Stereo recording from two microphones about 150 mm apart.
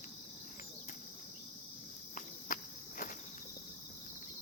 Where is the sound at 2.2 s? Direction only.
65° left (ahead or behind).